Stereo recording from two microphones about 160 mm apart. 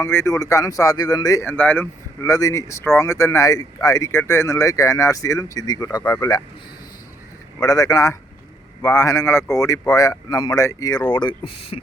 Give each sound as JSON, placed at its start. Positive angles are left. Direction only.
{"t": 0.0, "sound": "speech", "side_deg": 15}
{"t": 7.6, "sound": "speech", "side_deg": 20}